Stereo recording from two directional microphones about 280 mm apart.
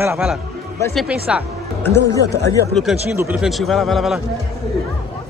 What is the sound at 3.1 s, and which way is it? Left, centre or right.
Speech, centre.